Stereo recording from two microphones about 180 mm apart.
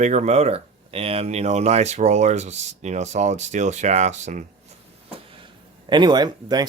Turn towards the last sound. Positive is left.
turn(degrees=-20)  # may be behind; listen again after turning